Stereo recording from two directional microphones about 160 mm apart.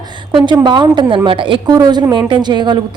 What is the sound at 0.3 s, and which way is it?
A woman's voice, 25° right (ahead or behind).